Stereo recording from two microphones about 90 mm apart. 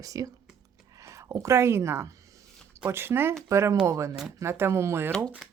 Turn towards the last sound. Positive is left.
turn(degrees=-5)  # may be behind; listen again after turning